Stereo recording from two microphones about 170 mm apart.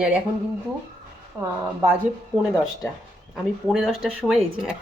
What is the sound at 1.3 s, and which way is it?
Speech, 15° right (ahead or behind).